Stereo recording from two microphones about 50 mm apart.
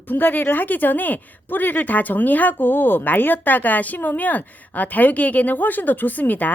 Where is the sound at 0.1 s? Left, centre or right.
Left.